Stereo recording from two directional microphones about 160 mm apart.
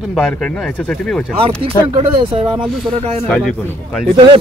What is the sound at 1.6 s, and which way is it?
Speech, 35° right (ahead or behind).